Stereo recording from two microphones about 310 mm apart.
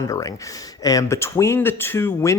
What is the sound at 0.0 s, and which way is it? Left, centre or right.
Speech, centre.